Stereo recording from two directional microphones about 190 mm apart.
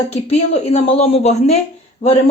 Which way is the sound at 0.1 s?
35° left (ahead or behind).